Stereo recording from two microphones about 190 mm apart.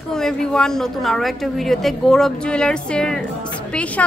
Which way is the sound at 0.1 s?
5° left (ahead or behind).